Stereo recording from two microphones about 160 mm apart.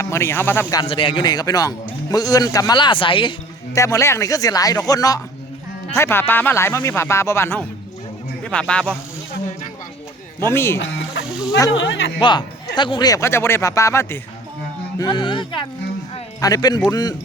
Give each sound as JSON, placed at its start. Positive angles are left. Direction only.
{"t": 0.0, "sound": "speech", "side_deg": 15}
{"t": 0.9, "sound": "a man's voice", "side_deg": 35}
{"t": 3.8, "sound": "a man's voice", "side_deg": 20}
{"t": 10.4, "sound": "speech", "side_deg": 15}
{"t": 12.2, "sound": "a man's voice", "side_deg": 30}